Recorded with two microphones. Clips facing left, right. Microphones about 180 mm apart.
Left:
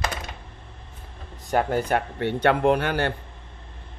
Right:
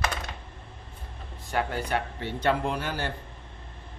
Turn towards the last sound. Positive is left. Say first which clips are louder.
# left 9 dB
turn(degrees=65)  # may be behind; listen again after turning